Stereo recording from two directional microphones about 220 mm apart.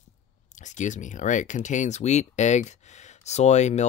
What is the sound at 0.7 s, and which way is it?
Speech, 35° left (ahead or behind).